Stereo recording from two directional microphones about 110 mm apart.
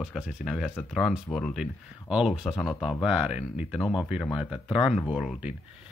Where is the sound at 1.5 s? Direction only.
5° right (ahead or behind).